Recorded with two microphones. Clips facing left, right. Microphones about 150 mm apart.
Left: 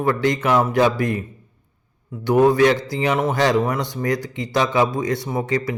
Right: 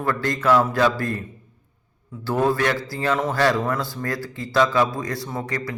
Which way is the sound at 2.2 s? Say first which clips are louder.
Left 6 dB; 20° left (ahead or behind).